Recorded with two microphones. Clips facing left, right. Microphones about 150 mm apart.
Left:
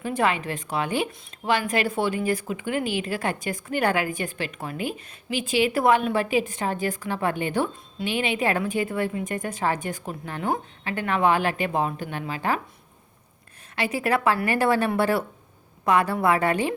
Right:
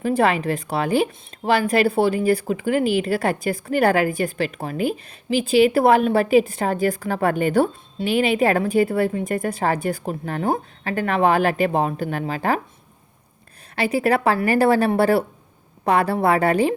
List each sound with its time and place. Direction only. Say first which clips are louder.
0.0 s speech: right 5 dB; 35° right (ahead or behind)
13.7 s speech: right 5 dB; 35° right (ahead or behind)